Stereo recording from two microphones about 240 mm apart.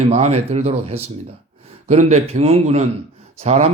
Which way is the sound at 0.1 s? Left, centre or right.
Right.